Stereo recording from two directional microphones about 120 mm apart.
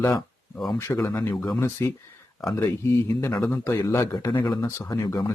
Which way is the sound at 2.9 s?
25° left (ahead or behind).